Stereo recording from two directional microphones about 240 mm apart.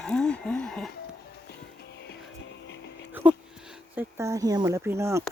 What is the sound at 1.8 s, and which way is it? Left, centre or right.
Music, left.